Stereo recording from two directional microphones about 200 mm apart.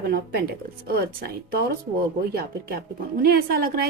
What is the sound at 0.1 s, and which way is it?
Speech, 50° right (ahead or behind).